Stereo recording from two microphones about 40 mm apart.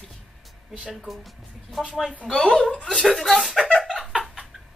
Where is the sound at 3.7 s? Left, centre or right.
Centre.